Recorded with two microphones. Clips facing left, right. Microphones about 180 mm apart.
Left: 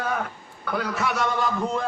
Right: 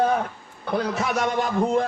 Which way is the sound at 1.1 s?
45° right (ahead or behind).